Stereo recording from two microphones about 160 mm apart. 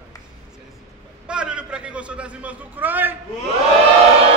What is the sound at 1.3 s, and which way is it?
A man's voice, 5° right (ahead or behind).